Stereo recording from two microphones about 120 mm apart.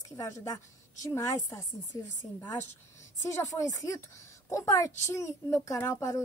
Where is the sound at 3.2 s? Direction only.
25° left (ahead or behind).